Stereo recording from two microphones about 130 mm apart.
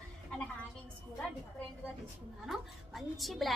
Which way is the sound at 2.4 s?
Centre (ahead or behind).